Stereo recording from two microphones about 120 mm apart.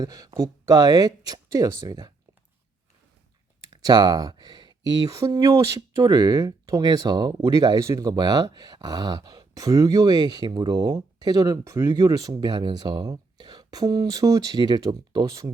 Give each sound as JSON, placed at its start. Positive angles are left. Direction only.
{"t": 0.0, "sound": "speech", "side_deg": -30}
{"t": 3.7, "sound": "a sound", "side_deg": -35}
{"t": 5.1, "sound": "speech", "side_deg": -25}